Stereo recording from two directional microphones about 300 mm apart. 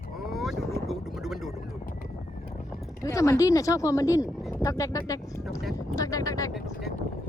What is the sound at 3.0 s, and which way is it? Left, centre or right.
Speech, centre.